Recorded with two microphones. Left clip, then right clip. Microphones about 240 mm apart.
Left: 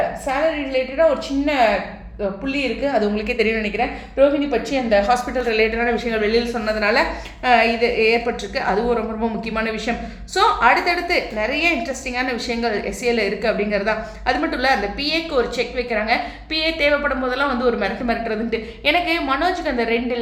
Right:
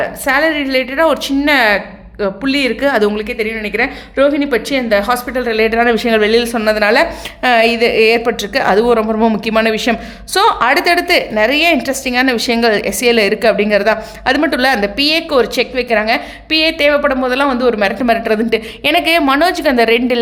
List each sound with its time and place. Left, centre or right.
0.3 s a woman's voice: right
3.2 s speech: centre
3.8 s a woman's voice: right
5.6 s a woman's voice: right